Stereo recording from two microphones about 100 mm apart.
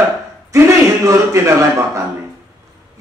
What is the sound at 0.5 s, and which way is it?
A man's voice, 30° right (ahead or behind).